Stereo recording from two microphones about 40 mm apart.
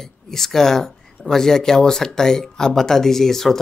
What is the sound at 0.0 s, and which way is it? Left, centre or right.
Speech, centre.